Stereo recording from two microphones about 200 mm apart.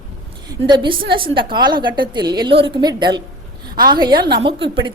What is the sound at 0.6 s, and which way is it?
A woman's voice, 25° right (ahead or behind).